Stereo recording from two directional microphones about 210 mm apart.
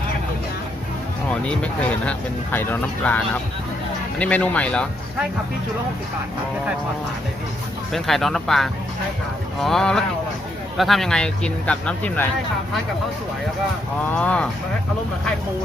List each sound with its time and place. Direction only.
1.3 s speech: 5° left (ahead or behind)
7.9 s speech: centre (ahead or behind)
14.1 s speech: 5° left (ahead or behind)